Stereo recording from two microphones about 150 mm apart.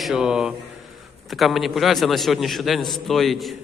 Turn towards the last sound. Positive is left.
turn(degrees=0)  # may be behind; listen again after turning